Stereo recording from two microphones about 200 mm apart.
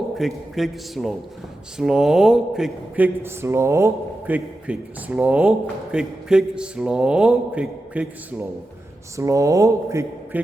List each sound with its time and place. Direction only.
0.2 s speech: centre (ahead or behind)